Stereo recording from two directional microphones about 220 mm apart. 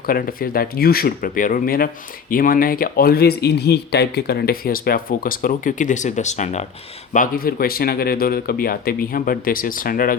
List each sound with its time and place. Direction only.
0.1 s speech: 40° left (ahead or behind)